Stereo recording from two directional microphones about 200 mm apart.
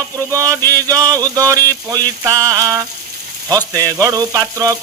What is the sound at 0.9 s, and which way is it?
Speech, 20° right (ahead or behind).